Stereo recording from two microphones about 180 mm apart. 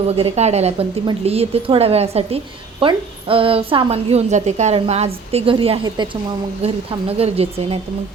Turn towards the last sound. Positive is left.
turn(degrees=-35)  # may be behind; listen again after turning